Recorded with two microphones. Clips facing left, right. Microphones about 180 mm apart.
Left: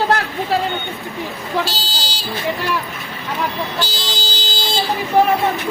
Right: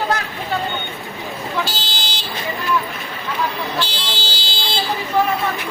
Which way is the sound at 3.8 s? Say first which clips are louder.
Left 1 dB; 40° left (ahead or behind).